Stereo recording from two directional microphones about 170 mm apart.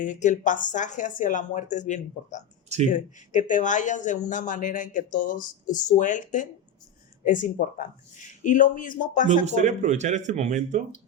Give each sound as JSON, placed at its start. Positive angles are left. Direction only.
{"t": 0.0, "sound": "speech", "side_deg": 45}
{"t": 9.2, "sound": "speech", "side_deg": -45}